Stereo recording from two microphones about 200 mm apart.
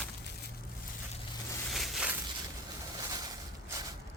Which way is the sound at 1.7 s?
5° right (ahead or behind).